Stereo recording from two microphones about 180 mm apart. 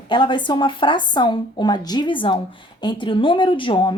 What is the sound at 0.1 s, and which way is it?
A woman's voice, 25° left (ahead or behind).